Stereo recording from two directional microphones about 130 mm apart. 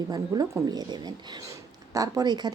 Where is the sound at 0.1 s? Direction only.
30° right (ahead or behind).